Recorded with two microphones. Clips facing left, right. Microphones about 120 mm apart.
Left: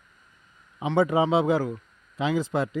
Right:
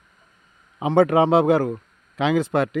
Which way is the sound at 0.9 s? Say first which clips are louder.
Right 5 dB; 65° right (ahead or behind).